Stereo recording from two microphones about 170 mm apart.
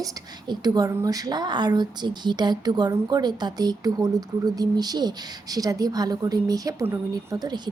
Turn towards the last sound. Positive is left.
turn(degrees=-25)  # may be behind; listen again after turning